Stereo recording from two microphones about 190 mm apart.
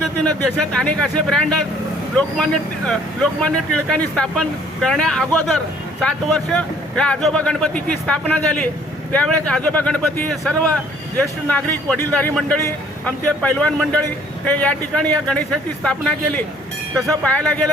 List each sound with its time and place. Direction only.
0.7 s a man's voice: 5° left (ahead or behind)